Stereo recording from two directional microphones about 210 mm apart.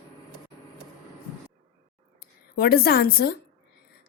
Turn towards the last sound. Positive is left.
turn(degrees=45)  # may be behind; listen again after turning